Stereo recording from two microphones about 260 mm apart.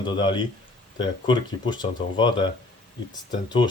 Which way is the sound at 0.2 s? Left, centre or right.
Centre.